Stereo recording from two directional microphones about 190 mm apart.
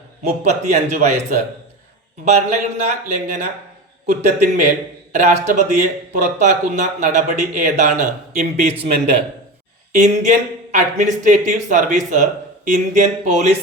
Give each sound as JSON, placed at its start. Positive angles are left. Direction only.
{"t": 0.2, "sound": "a man's voice", "side_deg": -35}
{"t": 9.9, "sound": "speech", "side_deg": -40}